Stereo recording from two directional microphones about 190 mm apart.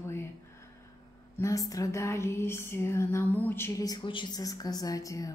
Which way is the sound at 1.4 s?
15° left (ahead or behind).